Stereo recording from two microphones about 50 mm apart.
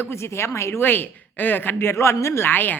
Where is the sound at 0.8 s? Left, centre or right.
Left.